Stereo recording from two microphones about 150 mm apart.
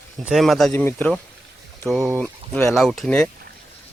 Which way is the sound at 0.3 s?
Centre (ahead or behind).